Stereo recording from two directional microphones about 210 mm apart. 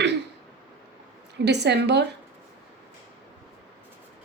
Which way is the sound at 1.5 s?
55° right (ahead or behind).